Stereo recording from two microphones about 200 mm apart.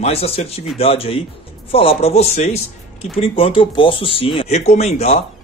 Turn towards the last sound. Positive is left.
turn(degrees=35)  # may be behind; listen again after turning